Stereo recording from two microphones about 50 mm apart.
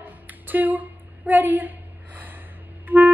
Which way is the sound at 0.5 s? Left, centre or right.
Right.